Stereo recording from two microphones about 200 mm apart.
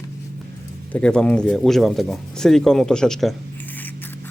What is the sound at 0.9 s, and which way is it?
Speech, 5° left (ahead or behind).